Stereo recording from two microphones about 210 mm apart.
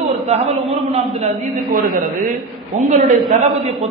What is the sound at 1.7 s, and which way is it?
A man's voice, 45° right (ahead or behind).